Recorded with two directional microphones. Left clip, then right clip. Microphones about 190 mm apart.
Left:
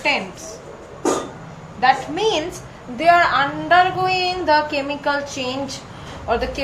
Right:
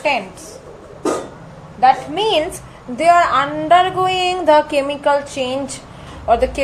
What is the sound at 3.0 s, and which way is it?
Speech, 50° right (ahead or behind).